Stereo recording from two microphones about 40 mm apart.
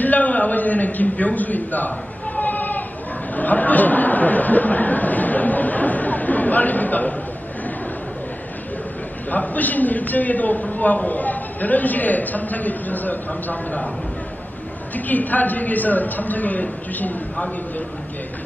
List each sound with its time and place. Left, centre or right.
0.0 s a sound: left
3.3 s chatter: left
9.3 s a man's voice: left
15.0 s a man's voice: left